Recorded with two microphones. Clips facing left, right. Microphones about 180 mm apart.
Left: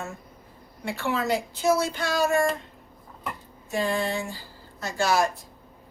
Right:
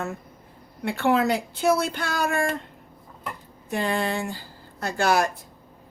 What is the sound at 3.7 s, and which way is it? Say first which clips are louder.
Speech: right 1 dB; 60° right (ahead or behind).